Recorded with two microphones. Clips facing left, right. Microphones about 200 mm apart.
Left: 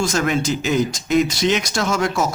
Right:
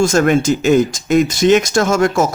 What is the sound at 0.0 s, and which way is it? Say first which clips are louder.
Speech: right 7 dB; 50° right (ahead or behind).